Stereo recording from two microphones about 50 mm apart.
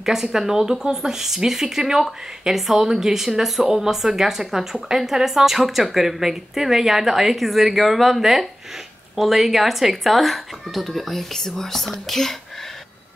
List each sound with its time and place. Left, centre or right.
0.0 s a woman's voice: centre